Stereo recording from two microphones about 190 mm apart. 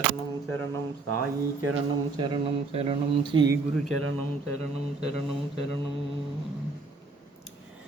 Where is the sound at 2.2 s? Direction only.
30° right (ahead or behind).